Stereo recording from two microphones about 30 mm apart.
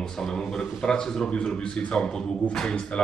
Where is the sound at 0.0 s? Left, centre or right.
Left.